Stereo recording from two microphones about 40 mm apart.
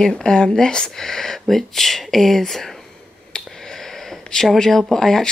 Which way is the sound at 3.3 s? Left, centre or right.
Centre.